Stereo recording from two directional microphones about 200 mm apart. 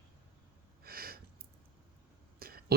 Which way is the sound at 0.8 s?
50° right (ahead or behind).